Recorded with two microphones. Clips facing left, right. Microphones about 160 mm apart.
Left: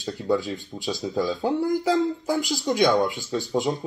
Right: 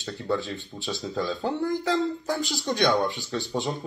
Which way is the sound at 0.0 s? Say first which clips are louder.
Left 4 dB; 10° left (ahead or behind).